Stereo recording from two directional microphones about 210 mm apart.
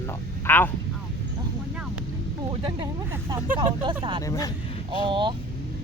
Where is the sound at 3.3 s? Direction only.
15° right (ahead or behind).